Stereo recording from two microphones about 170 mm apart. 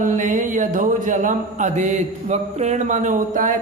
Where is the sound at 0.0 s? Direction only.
50° right (ahead or behind).